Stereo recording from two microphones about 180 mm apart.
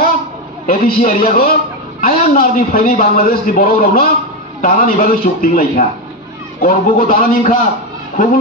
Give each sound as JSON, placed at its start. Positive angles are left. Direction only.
{"t": 0.7, "sound": "a man's voice", "side_deg": 55}